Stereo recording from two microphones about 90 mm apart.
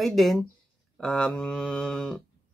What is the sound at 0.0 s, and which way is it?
Speech, centre (ahead or behind).